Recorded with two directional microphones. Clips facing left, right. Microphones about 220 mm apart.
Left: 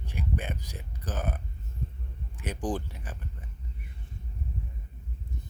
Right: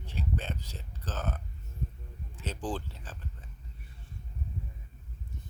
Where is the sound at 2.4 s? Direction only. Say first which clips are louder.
Left 4 dB; 15° left (ahead or behind).